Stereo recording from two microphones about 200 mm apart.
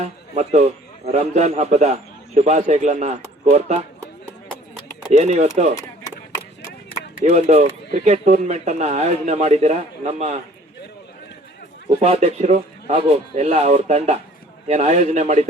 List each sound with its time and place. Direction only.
0.0 s a man's voice: 30° right (ahead or behind)
5.1 s a man's voice: 35° right (ahead or behind)
7.3 s a man's voice: 35° right (ahead or behind)
11.9 s a man's voice: 30° right (ahead or behind)